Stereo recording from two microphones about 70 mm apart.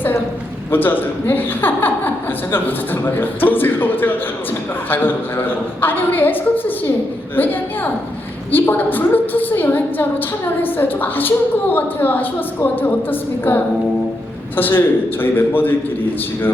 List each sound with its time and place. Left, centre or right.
0.7 s a woman's voice: left
8.5 s a woman's voice: left